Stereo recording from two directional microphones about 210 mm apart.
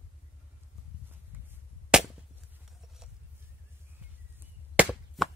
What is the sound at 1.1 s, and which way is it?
Cap gun, 10° right (ahead or behind).